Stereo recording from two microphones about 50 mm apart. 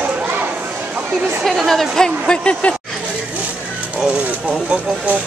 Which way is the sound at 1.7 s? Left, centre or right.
Centre.